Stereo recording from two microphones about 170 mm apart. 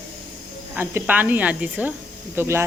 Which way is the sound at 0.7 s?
10° right (ahead or behind).